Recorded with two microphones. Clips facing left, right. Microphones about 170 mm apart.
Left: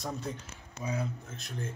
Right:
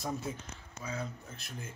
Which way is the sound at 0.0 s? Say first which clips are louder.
Even; 5° right (ahead or behind).